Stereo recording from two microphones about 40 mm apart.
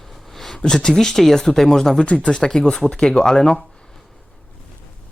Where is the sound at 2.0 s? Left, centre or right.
Left.